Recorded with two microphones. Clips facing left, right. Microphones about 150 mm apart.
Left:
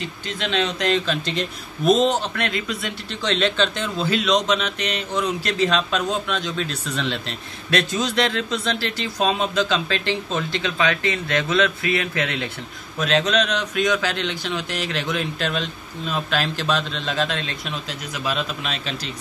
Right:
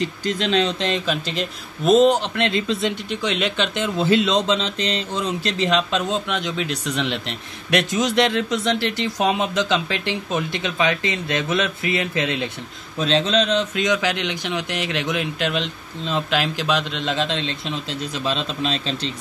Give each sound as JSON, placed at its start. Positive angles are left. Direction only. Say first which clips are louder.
{"t": 0.0, "sound": "speech", "louder": "right 6 dB", "side_deg": -40}
{"t": 0.8, "sound": "speech", "louder": "left 1 dB", "side_deg": -15}
{"t": 2.3, "sound": "speech", "louder": "right 4 dB", "side_deg": -25}
{"t": 3.1, "sound": "speech", "louder": "left 1 dB", "side_deg": -10}
{"t": 13.0, "sound": "speech", "louder": "right 1 dB", "side_deg": -30}